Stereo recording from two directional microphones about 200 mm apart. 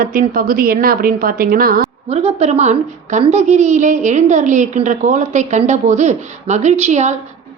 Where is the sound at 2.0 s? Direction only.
30° right (ahead or behind).